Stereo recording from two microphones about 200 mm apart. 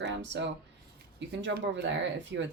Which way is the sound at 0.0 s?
60° right (ahead or behind).